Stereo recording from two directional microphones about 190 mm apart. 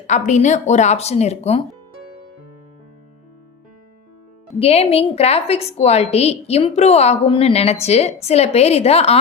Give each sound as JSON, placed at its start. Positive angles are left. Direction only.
{"t": 0.1, "sound": "a woman's voice", "side_deg": 40}
{"t": 4.6, "sound": "a woman's voice", "side_deg": 30}